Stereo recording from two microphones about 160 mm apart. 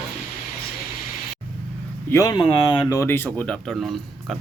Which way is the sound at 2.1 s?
20° left (ahead or behind).